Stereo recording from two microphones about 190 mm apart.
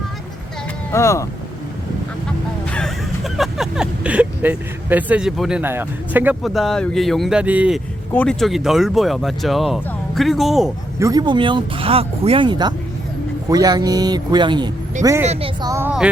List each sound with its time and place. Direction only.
0.9 s speech: 15° left (ahead or behind)
2.6 s speech: 5° left (ahead or behind)
8.1 s speech: 5° left (ahead or behind)
11.0 s a woman's voice: 20° right (ahead or behind)
15.3 s speech: 30° right (ahead or behind)
15.7 s a woman's voice: 10° right (ahead or behind)